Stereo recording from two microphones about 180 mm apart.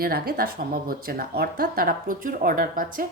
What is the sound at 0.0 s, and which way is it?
Speech, 55° right (ahead or behind).